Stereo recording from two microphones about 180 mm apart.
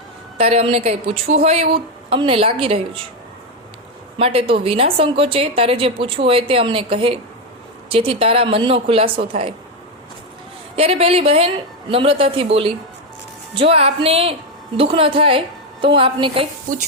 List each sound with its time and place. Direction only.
0.3 s a woman's voice: 35° right (ahead or behind)
4.2 s a woman's voice: 30° right (ahead or behind)
10.8 s a woman's voice: 35° right (ahead or behind)